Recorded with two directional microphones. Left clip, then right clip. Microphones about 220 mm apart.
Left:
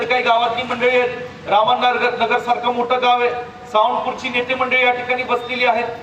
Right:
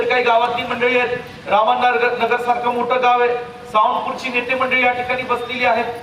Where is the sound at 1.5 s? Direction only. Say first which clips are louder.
Even; 50° left (ahead or behind).